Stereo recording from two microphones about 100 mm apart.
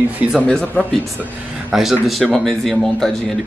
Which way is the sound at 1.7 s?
Centre (ahead or behind).